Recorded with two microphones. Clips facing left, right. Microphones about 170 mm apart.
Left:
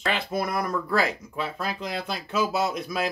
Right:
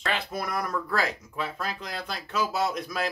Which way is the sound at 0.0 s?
5° left (ahead or behind).